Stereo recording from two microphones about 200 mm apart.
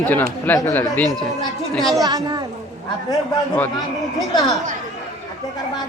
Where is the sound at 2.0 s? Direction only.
20° right (ahead or behind).